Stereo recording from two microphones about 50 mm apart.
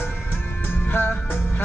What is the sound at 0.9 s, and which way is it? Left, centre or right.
Music, left.